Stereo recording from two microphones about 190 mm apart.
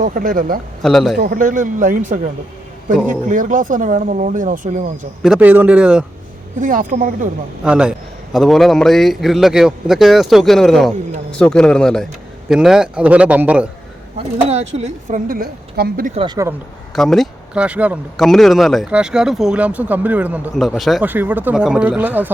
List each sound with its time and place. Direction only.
0.0 s speech: 45° right (ahead or behind)
0.8 s speech: centre (ahead or behind)
1.2 s speech: 45° right (ahead or behind)
5.2 s speech: 5° right (ahead or behind)
6.6 s speech: 45° right (ahead or behind)
7.6 s a man's voice: 5° right (ahead or behind)
14.5 s a woman's voice: 35° right (ahead or behind); by 16.1 s 50° right (ahead or behind)
16.1 s speech: 25° right (ahead or behind)
16.9 s speech: centre (ahead or behind)